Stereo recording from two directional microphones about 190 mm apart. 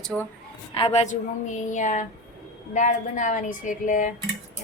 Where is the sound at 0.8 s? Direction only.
30° left (ahead or behind).